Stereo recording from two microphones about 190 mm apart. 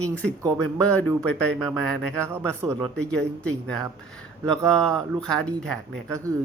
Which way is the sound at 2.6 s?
15° right (ahead or behind).